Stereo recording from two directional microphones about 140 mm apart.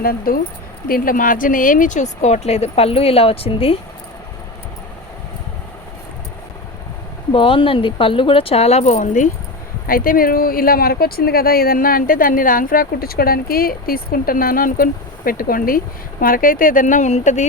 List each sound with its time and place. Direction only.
0.0 s speech: 90° left; by 3.8 s 45° left (ahead or behind)
7.3 s speech: 40° left (ahead or behind); by 9.3 s 65° left (ahead or behind)
9.8 s speech: 90° left; by 17.4 s 60° left (ahead or behind)